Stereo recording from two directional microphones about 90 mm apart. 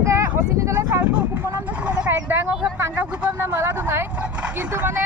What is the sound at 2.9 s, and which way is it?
Vehicle, 20° right (ahead or behind).